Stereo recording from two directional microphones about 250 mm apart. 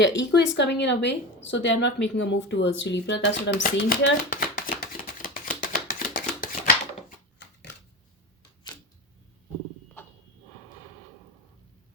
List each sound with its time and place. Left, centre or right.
0.0 s a woman's voice: left
7.3 s shuffling cards: left